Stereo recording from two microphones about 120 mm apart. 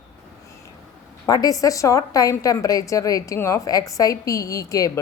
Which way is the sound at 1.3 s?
30° left (ahead or behind).